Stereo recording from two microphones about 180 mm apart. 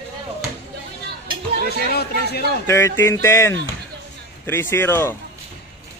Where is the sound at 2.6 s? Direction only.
15° left (ahead or behind).